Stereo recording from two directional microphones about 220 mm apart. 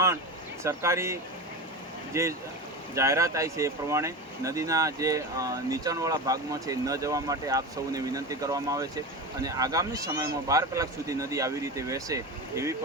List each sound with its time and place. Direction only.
0.6 s speech: 15° right (ahead or behind)